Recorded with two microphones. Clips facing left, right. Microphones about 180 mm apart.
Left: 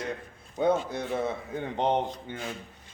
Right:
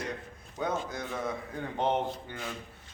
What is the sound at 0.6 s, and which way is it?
Speech, 30° left (ahead or behind).